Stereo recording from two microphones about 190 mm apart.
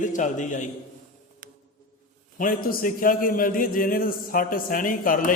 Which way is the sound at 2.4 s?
50° left (ahead or behind).